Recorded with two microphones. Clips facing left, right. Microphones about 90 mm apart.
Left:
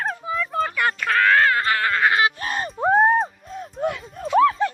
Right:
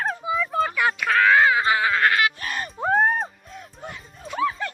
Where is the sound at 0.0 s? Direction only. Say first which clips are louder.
Even; centre (ahead or behind).